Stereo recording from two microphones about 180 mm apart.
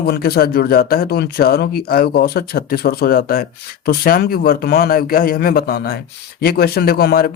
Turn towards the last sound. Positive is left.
turn(degrees=60)  # may be behind; listen again after turning